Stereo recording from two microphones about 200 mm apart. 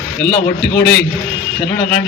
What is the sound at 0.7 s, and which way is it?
Speech, 60° left (ahead or behind).